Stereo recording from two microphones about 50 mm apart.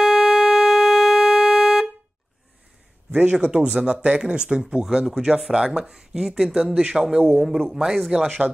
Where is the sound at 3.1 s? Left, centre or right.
Right.